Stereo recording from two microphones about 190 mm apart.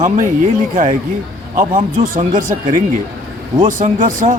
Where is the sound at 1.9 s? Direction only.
45° right (ahead or behind).